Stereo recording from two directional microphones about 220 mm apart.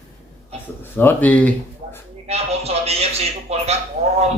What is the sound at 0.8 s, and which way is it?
Speech, 10° left (ahead or behind).